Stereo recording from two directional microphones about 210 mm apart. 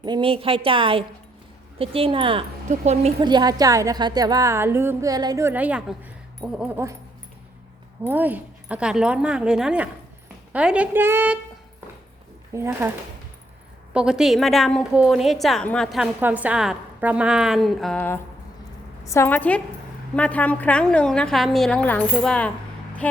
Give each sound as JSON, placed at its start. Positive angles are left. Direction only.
{"t": 0.0, "sound": "speech", "side_deg": -20}
{"t": 3.2, "sound": "a woman's voice", "side_deg": -20}
{"t": 8.0, "sound": "a woman's voice", "side_deg": -10}
{"t": 12.5, "sound": "a woman's voice", "side_deg": -15}
{"t": 13.9, "sound": "a woman's voice", "side_deg": -5}